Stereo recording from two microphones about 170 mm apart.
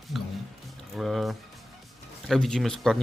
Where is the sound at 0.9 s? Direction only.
Centre (ahead or behind).